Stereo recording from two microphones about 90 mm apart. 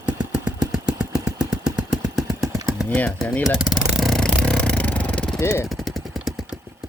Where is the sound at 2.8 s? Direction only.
15° left (ahead or behind).